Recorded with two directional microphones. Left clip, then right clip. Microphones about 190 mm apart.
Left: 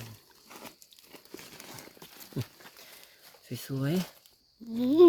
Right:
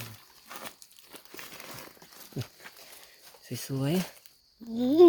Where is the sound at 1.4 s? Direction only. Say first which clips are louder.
Right 4 dB; 35° right (ahead or behind).